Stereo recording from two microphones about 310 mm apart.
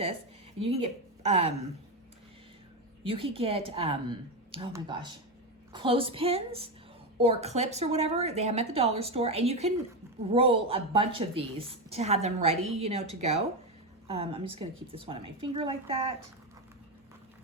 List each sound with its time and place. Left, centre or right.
0.6 s a woman's voice: centre
3.0 s a woman's voice: centre